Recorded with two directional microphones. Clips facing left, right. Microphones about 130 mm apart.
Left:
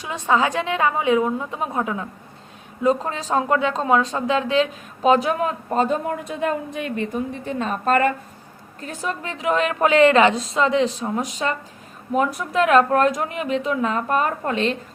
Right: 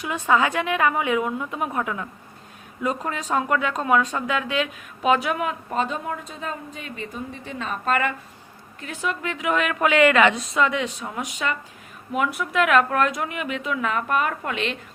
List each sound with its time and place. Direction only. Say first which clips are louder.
0.1 s speech: left 1 dB; 30° left (ahead or behind)
6.2 s a woman's voice: left 9 dB; 60° left (ahead or behind); by 14.8 s 35° left (ahead or behind)